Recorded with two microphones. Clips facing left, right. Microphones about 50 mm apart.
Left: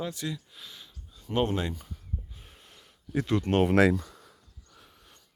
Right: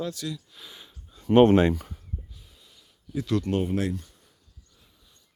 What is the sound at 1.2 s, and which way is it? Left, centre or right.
Speech, right.